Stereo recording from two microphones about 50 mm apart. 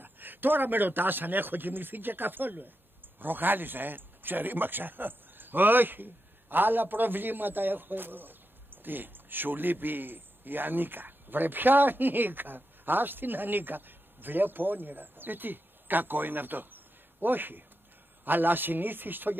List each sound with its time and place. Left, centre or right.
0.0 s a man's voice: right